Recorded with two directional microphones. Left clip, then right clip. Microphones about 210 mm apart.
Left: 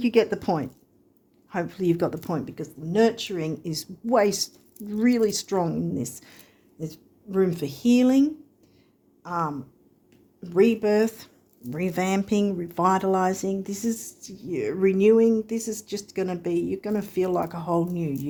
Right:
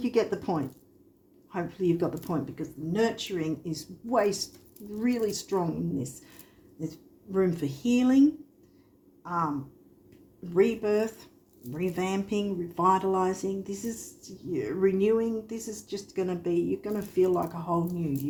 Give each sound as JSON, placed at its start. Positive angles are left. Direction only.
{"t": 0.0, "sound": "speech", "side_deg": 50}